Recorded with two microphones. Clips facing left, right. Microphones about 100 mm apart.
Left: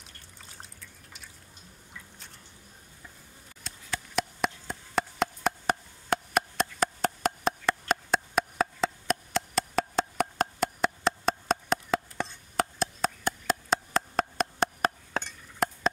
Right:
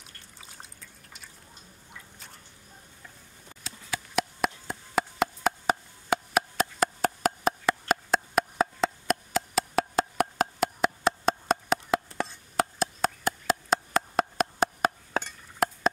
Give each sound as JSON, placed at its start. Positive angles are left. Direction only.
{"t": 0.0, "sound": "water", "side_deg": 0}
{"t": 2.0, "sound": "drip", "side_deg": 0}
{"t": 3.6, "sound": "a sound", "side_deg": 0}